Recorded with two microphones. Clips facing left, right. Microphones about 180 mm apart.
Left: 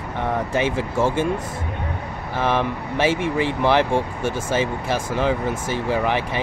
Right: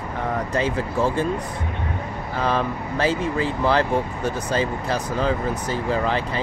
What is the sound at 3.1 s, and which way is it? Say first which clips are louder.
Speech: left 2 dB; 85° left.